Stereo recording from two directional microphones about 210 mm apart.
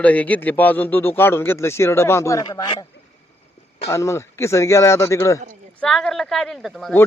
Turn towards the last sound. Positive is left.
turn(degrees=0)  # may be behind; listen again after turning